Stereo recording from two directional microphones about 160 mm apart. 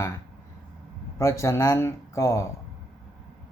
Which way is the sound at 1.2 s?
20° left (ahead or behind).